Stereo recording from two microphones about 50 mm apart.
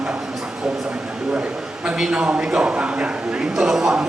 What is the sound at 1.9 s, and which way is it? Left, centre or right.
A man's voice, centre.